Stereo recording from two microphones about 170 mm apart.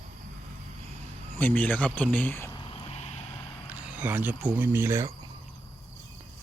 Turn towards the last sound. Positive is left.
turn(degrees=-15)  # may be behind; listen again after turning